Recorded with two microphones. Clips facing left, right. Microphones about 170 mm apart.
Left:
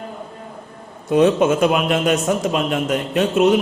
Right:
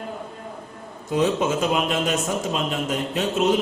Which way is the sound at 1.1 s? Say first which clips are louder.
Left 7 dB; 60° left (ahead or behind).